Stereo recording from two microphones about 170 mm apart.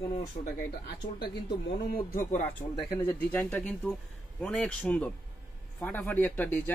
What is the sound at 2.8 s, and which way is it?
Speech, 15° left (ahead or behind).